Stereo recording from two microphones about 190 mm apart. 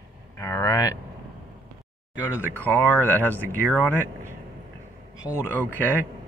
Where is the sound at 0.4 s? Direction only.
20° left (ahead or behind).